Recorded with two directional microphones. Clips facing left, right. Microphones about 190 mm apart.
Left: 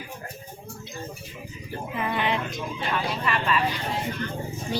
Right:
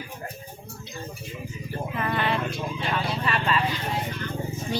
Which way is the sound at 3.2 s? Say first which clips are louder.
Even; 30° right (ahead or behind).